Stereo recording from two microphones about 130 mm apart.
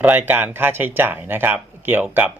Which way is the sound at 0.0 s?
15° right (ahead or behind).